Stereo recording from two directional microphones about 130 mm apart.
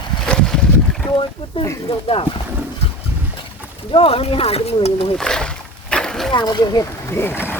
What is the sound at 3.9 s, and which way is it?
Speech, 45° left (ahead or behind).